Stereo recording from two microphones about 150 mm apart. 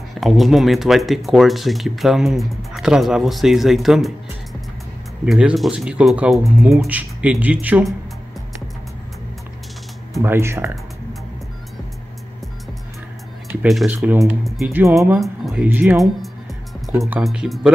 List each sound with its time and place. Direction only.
0.2 s speech: centre (ahead or behind)
5.2 s speech: 5° right (ahead or behind)
10.2 s speech: 15° right (ahead or behind)
13.7 s speech: centre (ahead or behind)
13.9 s speech: 15° right (ahead or behind)
15.1 s speech: centre (ahead or behind)